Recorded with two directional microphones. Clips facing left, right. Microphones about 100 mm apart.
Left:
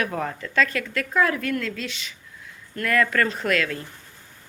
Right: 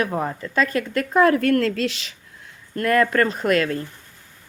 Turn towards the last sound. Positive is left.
turn(degrees=-40)  # may be behind; listen again after turning